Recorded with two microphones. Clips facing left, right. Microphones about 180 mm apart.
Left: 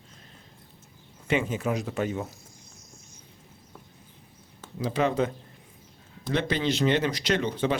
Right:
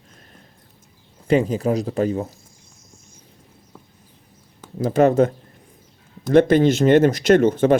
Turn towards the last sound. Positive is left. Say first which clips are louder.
# right 11 dB
turn(degrees=-50)  # may be behind; listen again after turning